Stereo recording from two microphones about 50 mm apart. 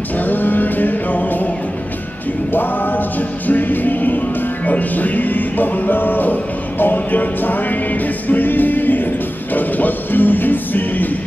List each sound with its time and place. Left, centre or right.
0.2 s music: left
2.5 s music: left